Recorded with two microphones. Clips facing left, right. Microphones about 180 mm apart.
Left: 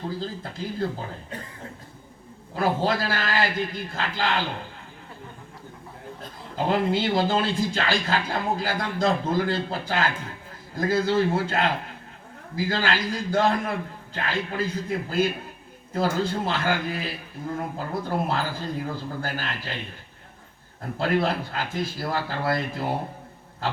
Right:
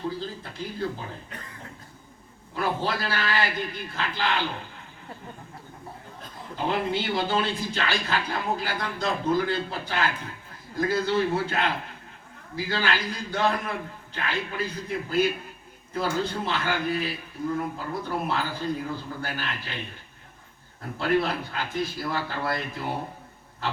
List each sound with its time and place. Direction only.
0.2 s speech: 40° left (ahead or behind)
2.6 s speech: 40° left (ahead or behind)
6.7 s speech: 40° left (ahead or behind)
21.0 s speech: 40° left (ahead or behind)